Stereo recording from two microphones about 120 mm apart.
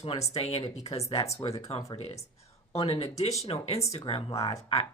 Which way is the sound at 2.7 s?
55° left (ahead or behind).